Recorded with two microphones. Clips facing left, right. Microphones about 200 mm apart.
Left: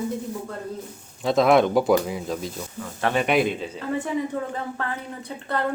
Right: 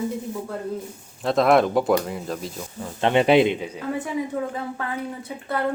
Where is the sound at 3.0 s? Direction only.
25° right (ahead or behind).